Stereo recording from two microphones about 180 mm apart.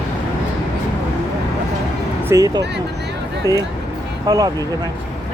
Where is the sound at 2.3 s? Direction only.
20° right (ahead or behind).